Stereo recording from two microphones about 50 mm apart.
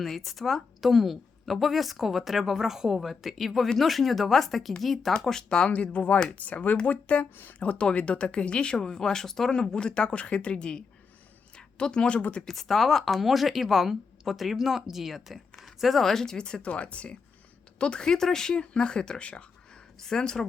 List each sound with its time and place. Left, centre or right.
0.0 s speech: centre
5.2 s speech: centre
5.7 s speech: left
11.5 s a sound: centre
12.4 s speech: centre
16.6 s speech: left